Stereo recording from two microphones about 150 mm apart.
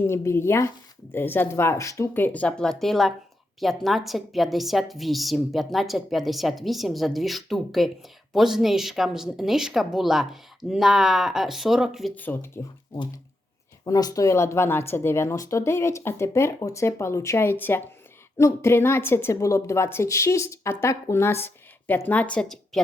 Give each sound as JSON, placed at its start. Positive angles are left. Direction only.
{"t": 0.0, "sound": "a woman's voice", "side_deg": 15}
{"t": 12.1, "sound": "a woman's voice", "side_deg": 15}
{"t": 13.8, "sound": "a woman's voice", "side_deg": 25}